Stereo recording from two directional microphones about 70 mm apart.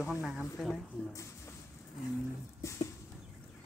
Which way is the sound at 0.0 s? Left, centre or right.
Centre.